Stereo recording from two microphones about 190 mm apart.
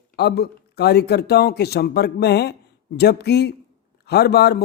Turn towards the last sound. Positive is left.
turn(degrees=60)  # may be behind; listen again after turning